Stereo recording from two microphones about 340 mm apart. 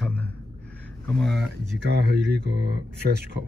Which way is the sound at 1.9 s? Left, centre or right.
Right.